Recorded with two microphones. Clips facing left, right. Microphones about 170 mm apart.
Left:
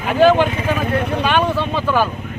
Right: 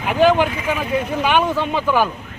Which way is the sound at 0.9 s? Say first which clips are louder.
Left 1 dB; 65° left (ahead or behind).